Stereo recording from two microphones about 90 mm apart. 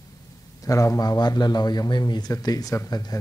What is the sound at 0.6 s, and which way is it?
Speech, 40° left (ahead or behind).